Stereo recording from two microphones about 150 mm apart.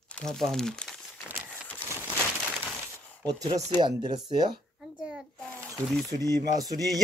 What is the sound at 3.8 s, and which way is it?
Speech, 30° right (ahead or behind).